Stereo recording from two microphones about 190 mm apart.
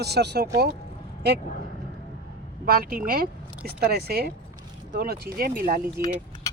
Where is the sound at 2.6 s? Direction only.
50° right (ahead or behind).